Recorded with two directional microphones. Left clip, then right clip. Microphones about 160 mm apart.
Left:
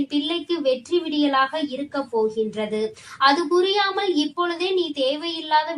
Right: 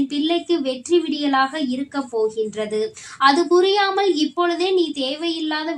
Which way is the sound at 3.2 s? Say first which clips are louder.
Right 3 dB; 45° right (ahead or behind).